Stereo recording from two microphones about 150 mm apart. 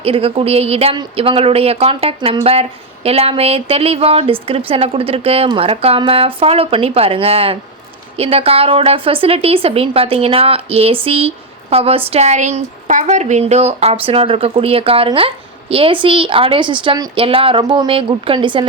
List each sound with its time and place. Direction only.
0.0 s speech: 40° right (ahead or behind)